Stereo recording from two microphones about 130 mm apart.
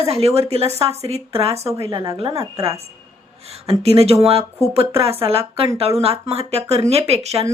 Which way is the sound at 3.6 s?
50° right (ahead or behind).